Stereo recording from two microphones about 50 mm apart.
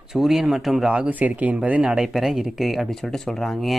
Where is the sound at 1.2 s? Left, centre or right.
Right.